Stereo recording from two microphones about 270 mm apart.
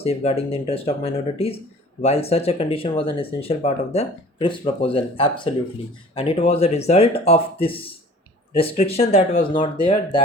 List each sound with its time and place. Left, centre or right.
0.0 s speech: left